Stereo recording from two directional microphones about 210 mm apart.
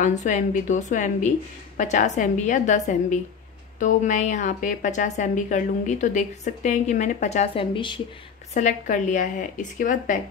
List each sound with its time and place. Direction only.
0.0 s a woman's voice: 35° left (ahead or behind)
8.5 s a woman's voice: 35° left (ahead or behind)